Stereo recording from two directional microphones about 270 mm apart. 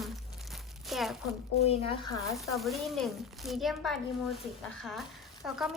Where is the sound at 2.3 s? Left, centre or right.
Centre.